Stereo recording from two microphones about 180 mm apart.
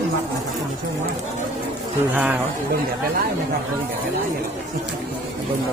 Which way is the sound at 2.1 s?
10° right (ahead or behind).